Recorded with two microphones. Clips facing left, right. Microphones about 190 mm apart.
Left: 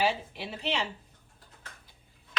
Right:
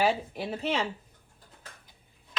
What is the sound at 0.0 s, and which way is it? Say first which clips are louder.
Speech: right 3 dB; 50° right (ahead or behind).